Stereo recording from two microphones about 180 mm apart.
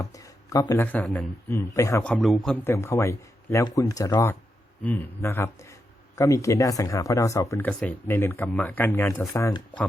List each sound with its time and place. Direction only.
0.0 s speech: 20° left (ahead or behind)
1.0 s a man's voice: centre (ahead or behind)
1.5 s speech: 15° left (ahead or behind)
2.0 s a man's voice: centre (ahead or behind)
2.6 s speech: 15° left (ahead or behind)